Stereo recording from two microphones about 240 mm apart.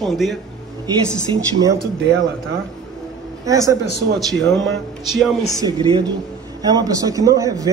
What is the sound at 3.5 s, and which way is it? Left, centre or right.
Speech, centre.